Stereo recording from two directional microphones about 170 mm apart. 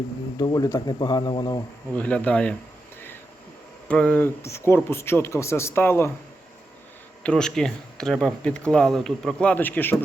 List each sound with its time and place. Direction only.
0.3 s speech: 25° left (ahead or behind)
2.0 s speech: 5° left (ahead or behind)
3.8 s speech: 5° left (ahead or behind)
7.2 s speech: 5° left (ahead or behind)